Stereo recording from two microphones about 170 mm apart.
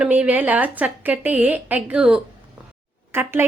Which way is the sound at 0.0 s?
10° right (ahead or behind).